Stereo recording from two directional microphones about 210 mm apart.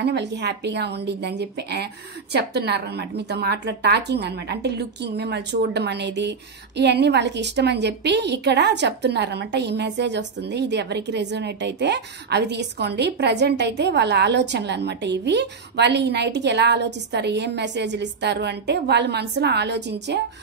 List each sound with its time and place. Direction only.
0.0 s a woman's voice: 55° right (ahead or behind)